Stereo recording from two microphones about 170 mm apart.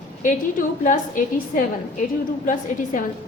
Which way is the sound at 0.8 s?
50° left (ahead or behind).